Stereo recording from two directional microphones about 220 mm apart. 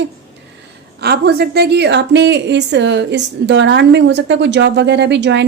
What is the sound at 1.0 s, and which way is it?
A woman's voice, 45° right (ahead or behind).